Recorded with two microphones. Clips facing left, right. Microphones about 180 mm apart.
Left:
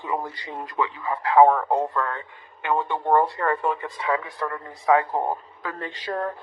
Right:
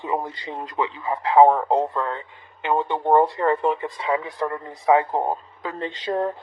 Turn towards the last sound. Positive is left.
turn(degrees=-20)  # may be behind; listen again after turning